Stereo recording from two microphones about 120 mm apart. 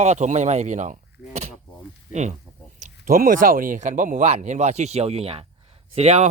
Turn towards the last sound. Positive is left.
turn(degrees=-60)  # may be behind; listen again after turning